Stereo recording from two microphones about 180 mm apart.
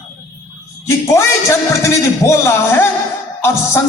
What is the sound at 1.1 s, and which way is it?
A man's voice, 15° left (ahead or behind).